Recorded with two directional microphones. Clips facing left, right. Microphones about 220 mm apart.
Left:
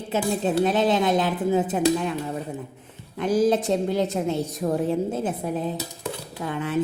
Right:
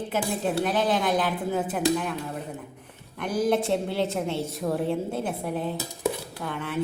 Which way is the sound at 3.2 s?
20° left (ahead or behind).